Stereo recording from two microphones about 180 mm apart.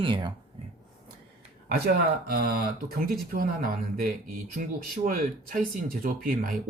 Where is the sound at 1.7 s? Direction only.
60° right (ahead or behind).